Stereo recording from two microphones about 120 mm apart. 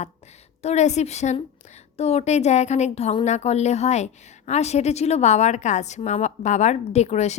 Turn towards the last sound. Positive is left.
turn(degrees=70)  # may be behind; listen again after turning